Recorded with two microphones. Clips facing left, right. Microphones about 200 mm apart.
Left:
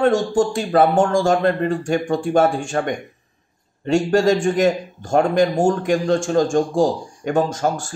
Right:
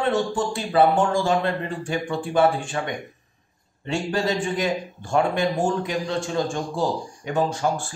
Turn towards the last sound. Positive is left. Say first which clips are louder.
# left 2 dB
turn(degrees=45)  # may be behind; listen again after turning